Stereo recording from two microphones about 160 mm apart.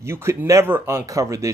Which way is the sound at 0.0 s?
15° right (ahead or behind).